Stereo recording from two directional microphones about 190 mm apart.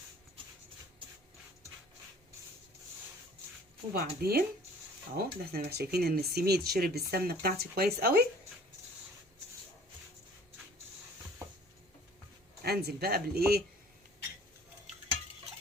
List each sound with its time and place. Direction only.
3.9 s speech: 55° right (ahead or behind)
12.6 s speech: 55° right (ahead or behind)